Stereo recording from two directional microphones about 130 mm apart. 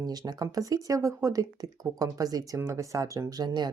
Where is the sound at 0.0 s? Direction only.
30° right (ahead or behind).